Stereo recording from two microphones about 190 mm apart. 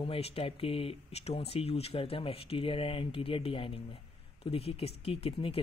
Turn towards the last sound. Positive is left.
turn(degrees=30)  # may be behind; listen again after turning